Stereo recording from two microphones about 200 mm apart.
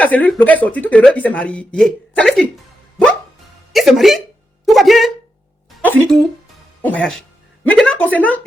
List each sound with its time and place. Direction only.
0.0 s speech: 5° left (ahead or behind)
3.7 s speech: centre (ahead or behind)
7.6 s a sound: 5° left (ahead or behind)